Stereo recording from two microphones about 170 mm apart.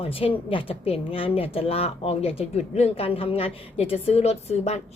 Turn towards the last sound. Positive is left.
turn(degrees=40)  # may be behind; listen again after turning